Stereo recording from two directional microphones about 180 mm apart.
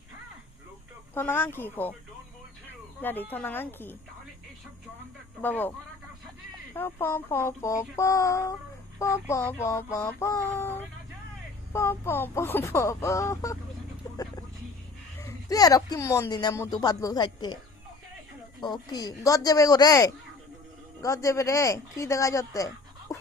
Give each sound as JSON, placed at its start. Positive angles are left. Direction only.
{"t": 1.1, "sound": "speech", "side_deg": 10}
{"t": 3.0, "sound": "speech", "side_deg": 10}
{"t": 5.4, "sound": "speech", "side_deg": 10}
{"t": 6.7, "sound": "speech", "side_deg": 10}
{"t": 15.2, "sound": "speech", "side_deg": 20}
{"t": 18.6, "sound": "speech", "side_deg": 25}